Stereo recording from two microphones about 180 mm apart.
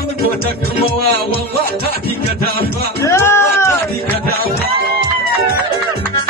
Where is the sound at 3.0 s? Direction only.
15° left (ahead or behind).